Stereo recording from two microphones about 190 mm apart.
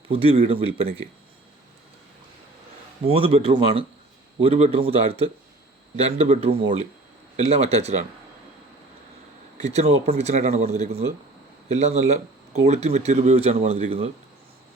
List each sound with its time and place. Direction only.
0.1 s speech: 30° right (ahead or behind)
3.1 s speech: 30° right (ahead or behind)
9.6 s speech: 35° right (ahead or behind)